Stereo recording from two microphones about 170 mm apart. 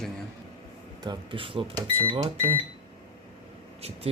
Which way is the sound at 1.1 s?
30° right (ahead or behind).